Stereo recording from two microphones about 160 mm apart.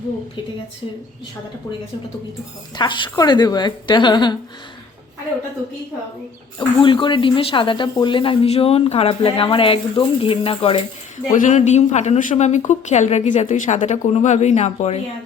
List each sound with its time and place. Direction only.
2.7 s a woman's voice: 30° left (ahead or behind)
6.6 s speech: 30° left (ahead or behind)
11.3 s speech: 50° left (ahead or behind)